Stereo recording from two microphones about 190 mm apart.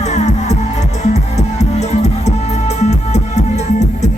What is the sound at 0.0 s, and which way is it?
Music, 35° left (ahead or behind).